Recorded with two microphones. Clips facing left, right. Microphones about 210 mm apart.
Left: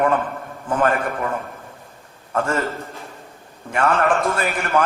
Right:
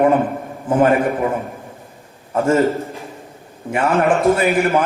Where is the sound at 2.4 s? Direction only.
15° right (ahead or behind).